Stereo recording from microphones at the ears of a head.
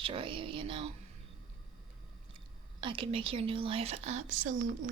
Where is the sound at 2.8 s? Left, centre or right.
Right.